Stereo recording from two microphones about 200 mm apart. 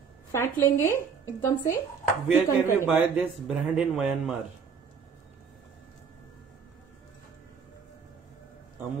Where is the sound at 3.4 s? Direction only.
Centre (ahead or behind).